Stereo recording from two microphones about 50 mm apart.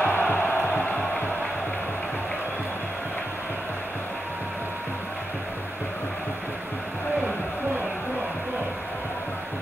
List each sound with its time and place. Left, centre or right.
0.0 s music: left